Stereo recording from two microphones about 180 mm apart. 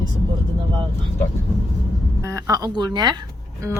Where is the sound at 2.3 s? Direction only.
20° right (ahead or behind).